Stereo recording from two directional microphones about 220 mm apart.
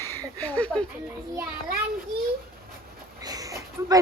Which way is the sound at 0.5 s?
5° left (ahead or behind).